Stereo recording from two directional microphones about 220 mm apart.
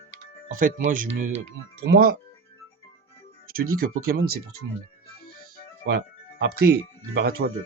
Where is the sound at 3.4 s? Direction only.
40° right (ahead or behind).